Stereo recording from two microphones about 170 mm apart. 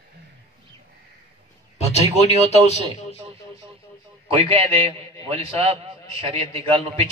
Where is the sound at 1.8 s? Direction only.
40° left (ahead or behind).